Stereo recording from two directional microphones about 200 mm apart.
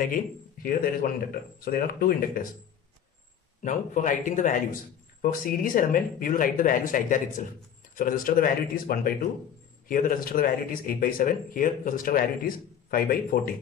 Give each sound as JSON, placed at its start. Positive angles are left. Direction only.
{"t": 0.0, "sound": "speech", "side_deg": 45}
{"t": 3.6, "sound": "speech", "side_deg": 40}